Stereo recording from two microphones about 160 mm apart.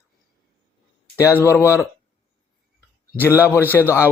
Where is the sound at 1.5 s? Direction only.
15° left (ahead or behind).